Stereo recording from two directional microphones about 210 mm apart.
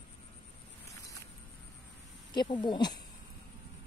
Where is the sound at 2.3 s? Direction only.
20° left (ahead or behind).